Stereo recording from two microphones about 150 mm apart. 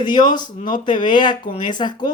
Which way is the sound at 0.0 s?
30° left (ahead or behind).